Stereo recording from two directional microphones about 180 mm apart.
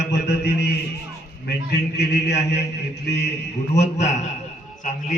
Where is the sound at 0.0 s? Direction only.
75° left (ahead or behind).